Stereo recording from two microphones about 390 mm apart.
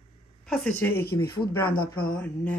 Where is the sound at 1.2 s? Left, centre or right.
Left.